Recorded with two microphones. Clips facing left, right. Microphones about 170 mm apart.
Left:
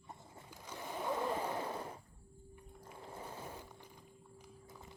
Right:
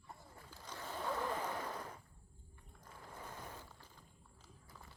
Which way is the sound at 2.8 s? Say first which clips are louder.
Left 4 dB; 25° left (ahead or behind).